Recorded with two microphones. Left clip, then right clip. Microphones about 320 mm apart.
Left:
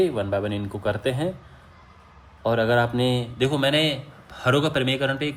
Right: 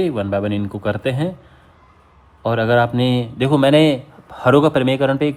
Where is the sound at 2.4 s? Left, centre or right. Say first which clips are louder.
Right 5 dB; centre.